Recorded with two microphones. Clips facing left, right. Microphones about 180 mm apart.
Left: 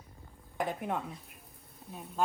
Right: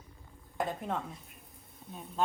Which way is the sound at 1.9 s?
5° left (ahead or behind).